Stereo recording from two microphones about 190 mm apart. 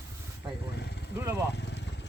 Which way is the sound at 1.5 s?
65° left (ahead or behind).